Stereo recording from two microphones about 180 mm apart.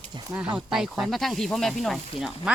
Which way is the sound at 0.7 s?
5° right (ahead or behind).